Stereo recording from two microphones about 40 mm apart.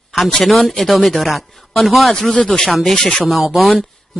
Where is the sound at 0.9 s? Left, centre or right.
Centre.